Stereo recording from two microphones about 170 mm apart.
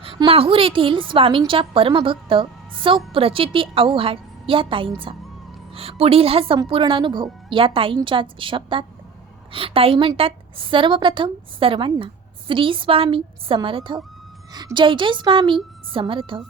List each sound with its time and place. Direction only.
0.0 s a woman's voice: 30° right (ahead or behind)